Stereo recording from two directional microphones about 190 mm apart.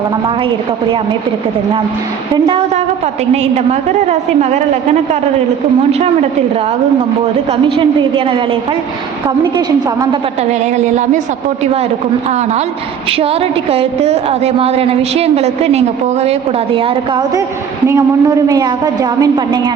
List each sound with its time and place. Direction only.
2.3 s a woman's voice: 25° right (ahead or behind)
3.3 s a woman's voice: 35° right (ahead or behind)
7.5 s a woman's voice: 25° right (ahead or behind)
10.5 s a woman's voice: 40° right (ahead or behind)
13.1 s a woman's voice: 30° right (ahead or behind)